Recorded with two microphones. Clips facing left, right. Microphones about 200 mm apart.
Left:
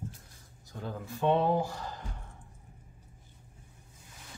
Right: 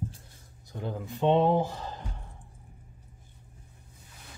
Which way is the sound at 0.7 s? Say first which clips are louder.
Right 3 dB; 20° right (ahead or behind).